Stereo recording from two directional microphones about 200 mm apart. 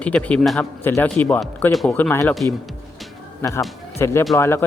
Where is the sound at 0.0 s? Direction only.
5° left (ahead or behind).